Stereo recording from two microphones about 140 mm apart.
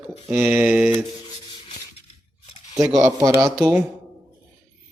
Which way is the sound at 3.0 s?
20° right (ahead or behind).